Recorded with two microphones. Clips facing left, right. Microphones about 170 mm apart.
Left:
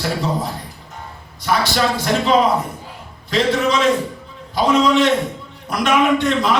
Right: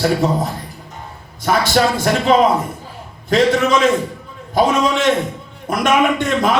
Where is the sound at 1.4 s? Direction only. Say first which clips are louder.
Right 3 dB; 50° right (ahead or behind).